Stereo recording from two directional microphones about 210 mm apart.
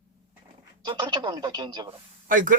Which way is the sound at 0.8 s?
20° right (ahead or behind).